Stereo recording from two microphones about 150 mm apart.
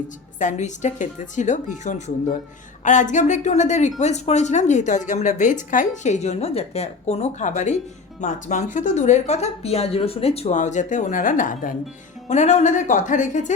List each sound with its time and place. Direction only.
0.3 s speech: 55° left (ahead or behind)
12.3 s speech: 50° left (ahead or behind)